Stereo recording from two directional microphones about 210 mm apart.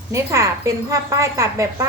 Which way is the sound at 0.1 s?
15° right (ahead or behind).